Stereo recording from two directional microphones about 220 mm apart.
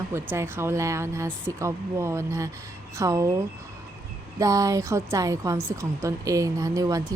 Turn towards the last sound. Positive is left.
turn(degrees=-15)  # may be behind; listen again after turning